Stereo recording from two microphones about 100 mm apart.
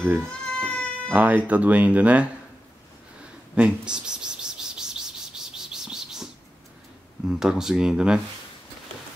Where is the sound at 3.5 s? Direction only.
10° right (ahead or behind).